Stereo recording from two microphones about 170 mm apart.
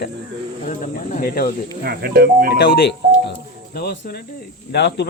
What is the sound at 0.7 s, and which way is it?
Speech, 50° left (ahead or behind).